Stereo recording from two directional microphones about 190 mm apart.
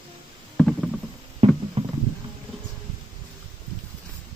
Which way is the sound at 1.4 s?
30° right (ahead or behind).